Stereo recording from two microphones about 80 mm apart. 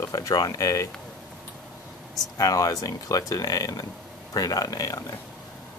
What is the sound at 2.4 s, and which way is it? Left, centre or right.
Speech, left.